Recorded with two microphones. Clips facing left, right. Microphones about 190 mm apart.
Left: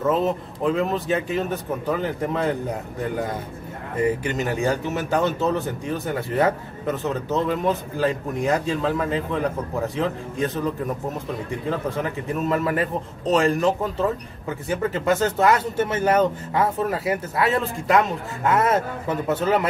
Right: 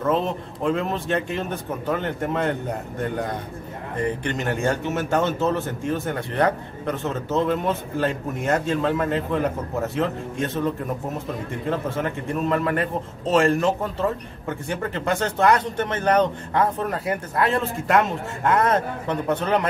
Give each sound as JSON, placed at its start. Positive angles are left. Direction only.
{"t": 0.0, "sound": "a man's voice", "side_deg": 0}